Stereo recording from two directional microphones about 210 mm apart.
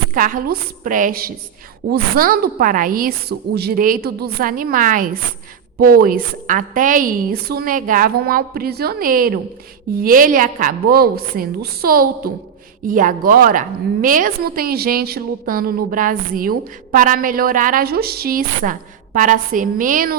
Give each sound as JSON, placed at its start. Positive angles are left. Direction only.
{"t": 0.1, "sound": "a woman's voice", "side_deg": -40}